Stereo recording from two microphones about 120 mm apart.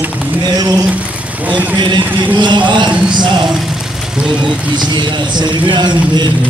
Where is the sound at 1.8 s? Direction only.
40° right (ahead or behind).